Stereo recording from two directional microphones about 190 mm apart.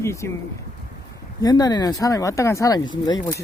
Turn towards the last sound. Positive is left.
turn(degrees=20)  # may be behind; listen again after turning